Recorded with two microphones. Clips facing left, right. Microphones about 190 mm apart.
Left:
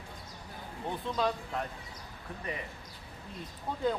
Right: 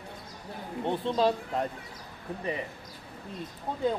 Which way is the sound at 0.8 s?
30° right (ahead or behind).